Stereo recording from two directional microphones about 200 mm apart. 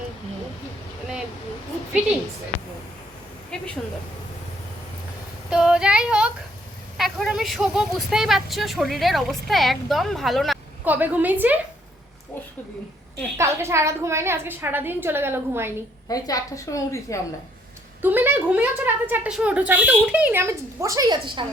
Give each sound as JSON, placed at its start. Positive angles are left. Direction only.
{"t": 3.5, "sound": "speech", "side_deg": 5}
{"t": 5.5, "sound": "female singing", "side_deg": -5}
{"t": 6.9, "sound": "speech", "side_deg": 0}
{"t": 13.3, "sound": "a woman's voice", "side_deg": -15}
{"t": 16.0, "sound": "a woman's voice", "side_deg": 20}
{"t": 18.0, "sound": "a woman's voice", "side_deg": -10}